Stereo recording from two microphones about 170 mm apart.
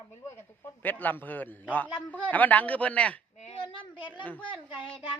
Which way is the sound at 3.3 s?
35° left (ahead or behind).